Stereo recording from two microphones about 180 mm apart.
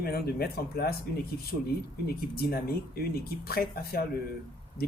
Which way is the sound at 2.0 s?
55° left (ahead or behind).